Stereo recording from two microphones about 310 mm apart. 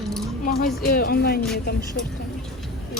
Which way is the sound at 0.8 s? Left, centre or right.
Left.